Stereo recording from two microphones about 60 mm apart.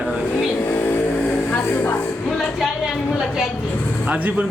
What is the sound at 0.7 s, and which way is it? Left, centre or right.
Vehicle, left.